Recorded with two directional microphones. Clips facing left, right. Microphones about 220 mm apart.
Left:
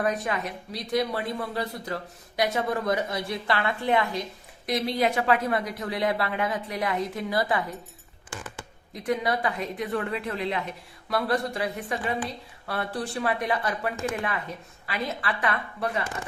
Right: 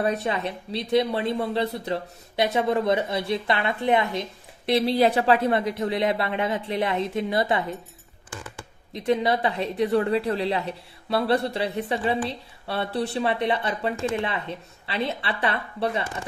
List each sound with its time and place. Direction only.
0.0 s speech: 30° right (ahead or behind)
8.9 s speech: 25° right (ahead or behind)